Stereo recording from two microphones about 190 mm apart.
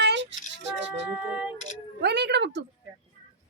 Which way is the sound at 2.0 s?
60° right (ahead or behind).